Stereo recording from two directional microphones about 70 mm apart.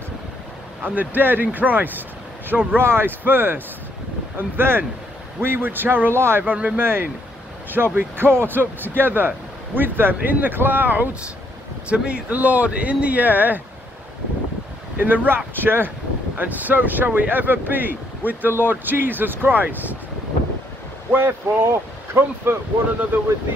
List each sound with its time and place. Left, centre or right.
0.8 s speech: right
6.4 s speech: right
11.9 s speech: centre
15.0 s speech: right
21.1 s speech: right